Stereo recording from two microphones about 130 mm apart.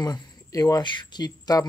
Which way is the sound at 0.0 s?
30° left (ahead or behind).